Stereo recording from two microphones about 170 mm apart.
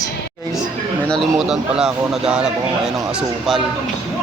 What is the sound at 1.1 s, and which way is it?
Speech, centre (ahead or behind).